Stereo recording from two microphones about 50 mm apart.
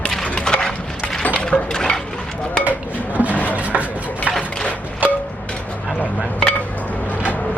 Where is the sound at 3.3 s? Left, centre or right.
Left.